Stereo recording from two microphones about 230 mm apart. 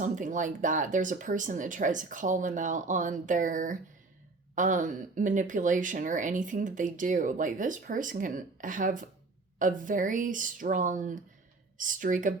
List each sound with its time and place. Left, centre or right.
0.0 s speech: right